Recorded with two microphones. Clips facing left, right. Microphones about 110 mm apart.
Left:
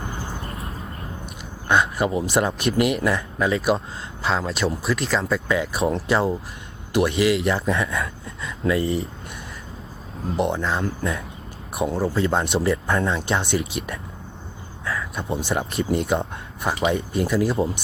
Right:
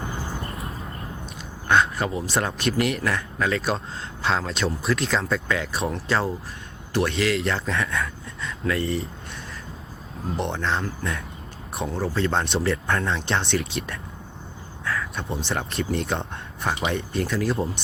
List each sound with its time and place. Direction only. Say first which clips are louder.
1.6 s a sound: left 1 dB; 10° left (ahead or behind)
2.2 s speech: left 3 dB; 10° left (ahead or behind)
10.3 s speech: left 3 dB; 10° left (ahead or behind)